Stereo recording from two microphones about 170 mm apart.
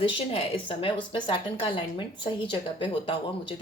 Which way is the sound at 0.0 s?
30° left (ahead or behind).